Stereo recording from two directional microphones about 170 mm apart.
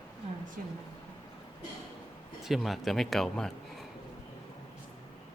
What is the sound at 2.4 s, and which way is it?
A man's voice, centre (ahead or behind).